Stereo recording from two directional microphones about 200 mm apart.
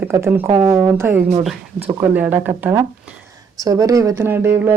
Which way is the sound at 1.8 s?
25° right (ahead or behind).